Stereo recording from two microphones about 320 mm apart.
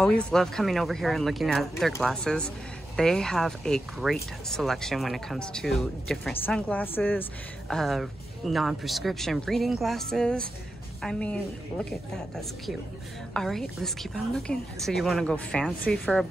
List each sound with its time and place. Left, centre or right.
0.0 s speech: centre
13.3 s speech: centre